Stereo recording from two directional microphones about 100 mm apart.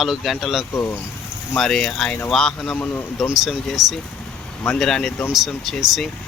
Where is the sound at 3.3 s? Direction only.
Centre (ahead or behind).